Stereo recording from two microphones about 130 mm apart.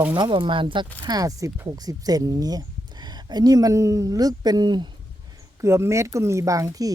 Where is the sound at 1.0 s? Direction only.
30° right (ahead or behind).